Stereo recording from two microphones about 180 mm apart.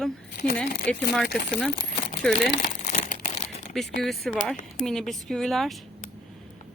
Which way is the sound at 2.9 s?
45° left (ahead or behind).